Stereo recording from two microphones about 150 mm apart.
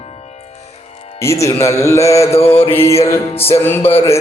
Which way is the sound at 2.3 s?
40° left (ahead or behind).